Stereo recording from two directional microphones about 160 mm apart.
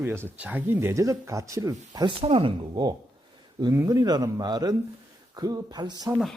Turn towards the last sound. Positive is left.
turn(degrees=-25)  # may be behind; listen again after turning